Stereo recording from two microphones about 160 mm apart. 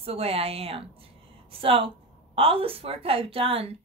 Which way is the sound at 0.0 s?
35° right (ahead or behind).